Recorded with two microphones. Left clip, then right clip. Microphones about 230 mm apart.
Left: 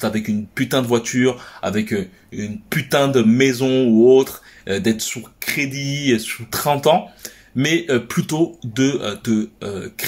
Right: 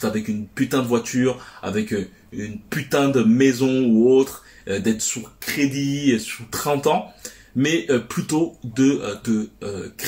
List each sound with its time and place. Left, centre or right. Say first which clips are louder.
0.0 s speech: left 2 dB; left